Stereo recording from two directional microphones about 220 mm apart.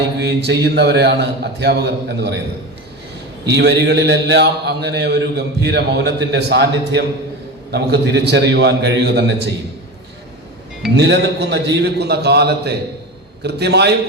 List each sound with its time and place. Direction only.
0.2 s a man's voice: 50° right (ahead or behind)
3.4 s a man's voice: 50° right (ahead or behind)
10.9 s a man's voice: 50° right (ahead or behind)